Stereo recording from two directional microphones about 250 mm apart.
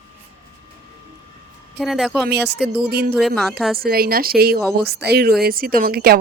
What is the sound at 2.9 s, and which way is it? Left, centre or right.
Speech, right.